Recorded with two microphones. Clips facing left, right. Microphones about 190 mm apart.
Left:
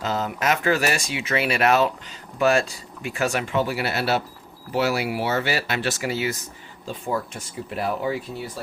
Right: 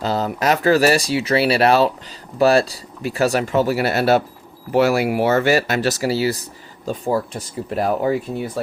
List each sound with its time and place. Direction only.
0.0 s speech: 35° right (ahead or behind); by 8.6 s 50° right (ahead or behind)